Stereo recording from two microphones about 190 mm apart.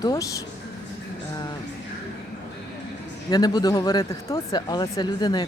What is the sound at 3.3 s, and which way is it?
Speech, 20° left (ahead or behind).